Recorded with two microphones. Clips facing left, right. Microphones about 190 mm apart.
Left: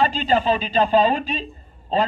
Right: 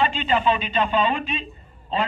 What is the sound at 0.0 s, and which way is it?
A man's voice, 35° left (ahead or behind).